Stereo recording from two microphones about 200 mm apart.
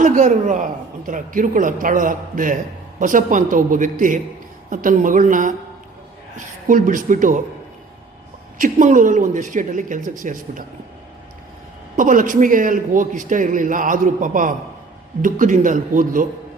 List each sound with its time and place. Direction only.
0.0 s a man's voice: 40° right (ahead or behind)
8.5 s a man's voice: 40° right (ahead or behind)
11.9 s a man's voice: 40° right (ahead or behind)